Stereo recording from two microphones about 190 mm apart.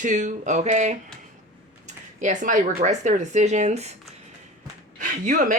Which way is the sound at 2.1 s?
40° right (ahead or behind).